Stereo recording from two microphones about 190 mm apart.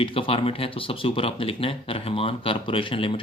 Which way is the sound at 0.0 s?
30° left (ahead or behind).